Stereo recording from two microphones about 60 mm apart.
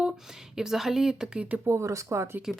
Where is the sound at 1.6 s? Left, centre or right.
Right.